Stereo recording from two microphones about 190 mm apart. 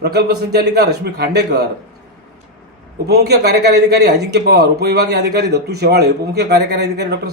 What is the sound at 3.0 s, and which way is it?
Speech, 60° right (ahead or behind).